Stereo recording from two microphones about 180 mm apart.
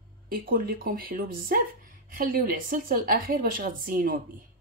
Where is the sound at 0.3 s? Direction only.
55° right (ahead or behind).